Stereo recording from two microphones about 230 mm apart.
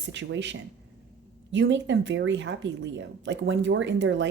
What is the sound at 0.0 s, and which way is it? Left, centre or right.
Speech, right.